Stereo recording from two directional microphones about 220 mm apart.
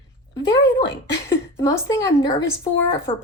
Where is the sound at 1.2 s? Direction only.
15° left (ahead or behind).